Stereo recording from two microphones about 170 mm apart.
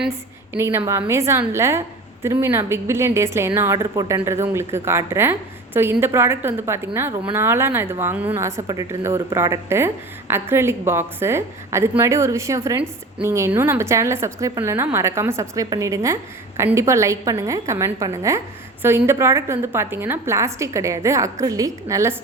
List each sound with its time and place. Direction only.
0.1 s speech: 15° right (ahead or behind)